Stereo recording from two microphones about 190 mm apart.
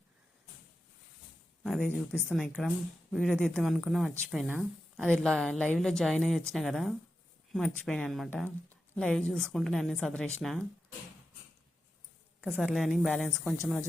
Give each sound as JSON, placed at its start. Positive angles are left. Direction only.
{"t": 1.6, "sound": "a woman's voice", "side_deg": 5}
{"t": 12.5, "sound": "a woman's voice", "side_deg": 5}